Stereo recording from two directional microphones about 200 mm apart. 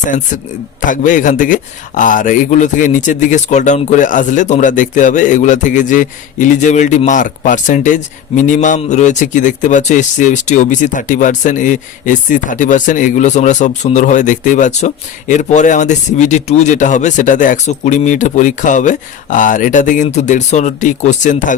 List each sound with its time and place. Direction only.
0.9 s a man's voice: 40° left (ahead or behind)